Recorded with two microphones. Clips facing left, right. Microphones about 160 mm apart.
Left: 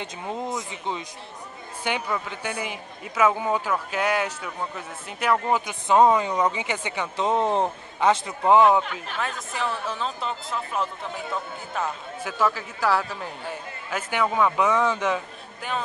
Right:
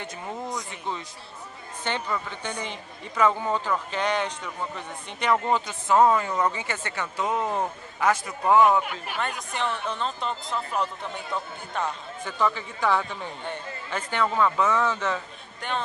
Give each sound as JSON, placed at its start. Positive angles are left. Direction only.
{"t": 0.0, "sound": "speech", "side_deg": 20}
{"t": 5.7, "sound": "speech", "side_deg": 20}
{"t": 8.8, "sound": "speech", "side_deg": -10}
{"t": 9.8, "sound": "speech", "side_deg": 0}
{"t": 12.3, "sound": "speech", "side_deg": 5}